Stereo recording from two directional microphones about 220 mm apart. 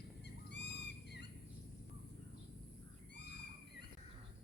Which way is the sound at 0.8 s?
50° left (ahead or behind).